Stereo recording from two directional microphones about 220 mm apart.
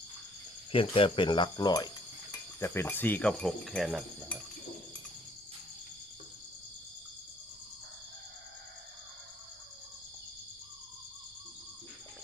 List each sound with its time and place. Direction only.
0.7 s speech: 25° left (ahead or behind); by 4.4 s centre (ahead or behind)